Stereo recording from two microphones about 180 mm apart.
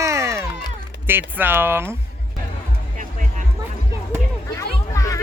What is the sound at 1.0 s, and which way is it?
Speech, 10° right (ahead or behind).